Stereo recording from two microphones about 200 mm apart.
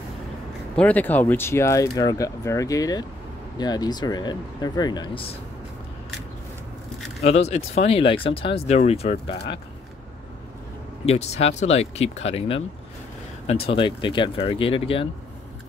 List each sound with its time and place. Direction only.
0.7 s speech: 10° left (ahead or behind)
7.2 s speech: 30° left (ahead or behind)
11.1 s speech: 35° left (ahead or behind)